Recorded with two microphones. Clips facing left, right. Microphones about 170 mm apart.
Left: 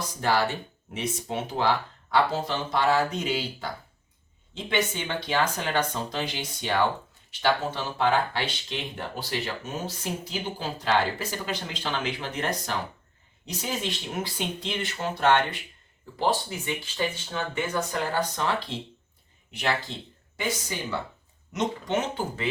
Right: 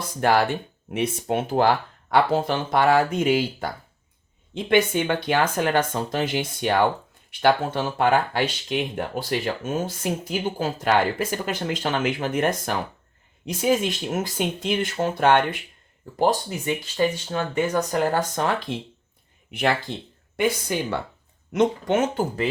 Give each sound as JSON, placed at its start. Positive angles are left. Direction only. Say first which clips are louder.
{"t": 0.2, "sound": "speech", "louder": "right 5 dB", "side_deg": -60}
{"t": 4.7, "sound": "speech", "louder": "right 8 dB", "side_deg": -55}